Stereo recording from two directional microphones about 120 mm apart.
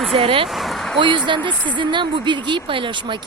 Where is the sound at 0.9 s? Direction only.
40° right (ahead or behind).